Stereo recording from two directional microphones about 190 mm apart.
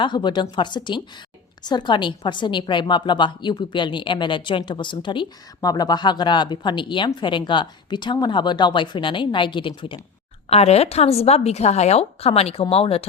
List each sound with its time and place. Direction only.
0.0 s a woman's voice: 25° left (ahead or behind)